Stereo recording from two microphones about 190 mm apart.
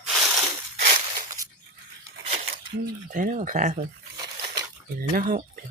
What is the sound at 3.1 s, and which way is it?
Speech, 40° right (ahead or behind).